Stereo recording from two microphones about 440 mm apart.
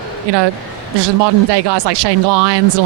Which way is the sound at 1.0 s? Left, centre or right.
Right.